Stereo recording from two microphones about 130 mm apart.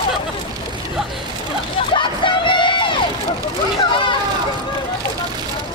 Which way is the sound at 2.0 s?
40° left (ahead or behind).